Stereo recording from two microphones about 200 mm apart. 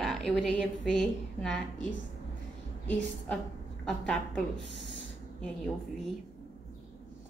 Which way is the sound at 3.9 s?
5° left (ahead or behind).